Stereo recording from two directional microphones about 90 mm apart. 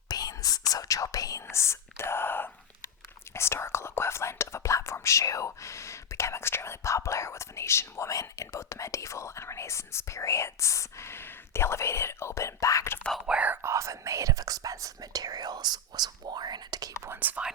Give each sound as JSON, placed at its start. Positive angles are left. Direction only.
{"t": 0.1, "sound": "speech", "side_deg": 45}
{"t": 13.2, "sound": "speech", "side_deg": -15}
{"t": 13.6, "sound": "speech", "side_deg": -35}
{"t": 17.2, "sound": "speech", "side_deg": -15}